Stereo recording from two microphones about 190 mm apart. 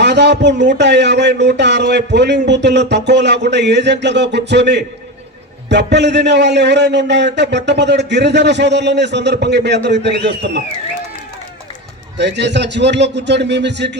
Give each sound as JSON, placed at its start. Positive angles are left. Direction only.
{"t": 0.0, "sound": "a man's voice", "side_deg": -65}
{"t": 12.1, "sound": "a man's voice", "side_deg": -65}